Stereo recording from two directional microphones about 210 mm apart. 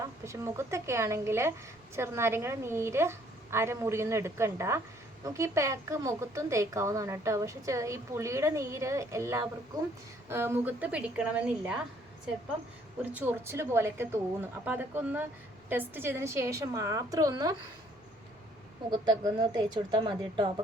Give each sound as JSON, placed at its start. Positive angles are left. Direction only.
{"t": 0.0, "sound": "a woman's voice", "side_deg": -15}
{"t": 13.1, "sound": "a woman's voice", "side_deg": -10}
{"t": 18.9, "sound": "speech", "side_deg": -20}